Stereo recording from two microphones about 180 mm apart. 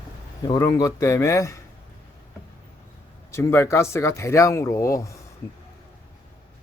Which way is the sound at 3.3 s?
15° left (ahead or behind).